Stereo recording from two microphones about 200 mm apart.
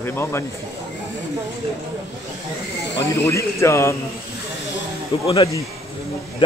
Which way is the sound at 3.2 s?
15° left (ahead or behind).